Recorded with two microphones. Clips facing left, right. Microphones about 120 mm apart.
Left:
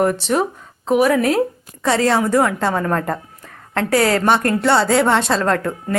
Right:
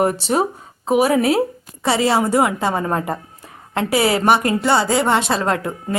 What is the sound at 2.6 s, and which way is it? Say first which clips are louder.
Speech: left 1 dB; 10° right (ahead or behind).